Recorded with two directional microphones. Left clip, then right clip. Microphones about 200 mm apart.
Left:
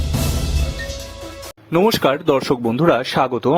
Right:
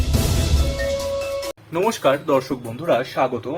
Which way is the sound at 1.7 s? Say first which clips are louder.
Left 3 dB; 50° left (ahead or behind).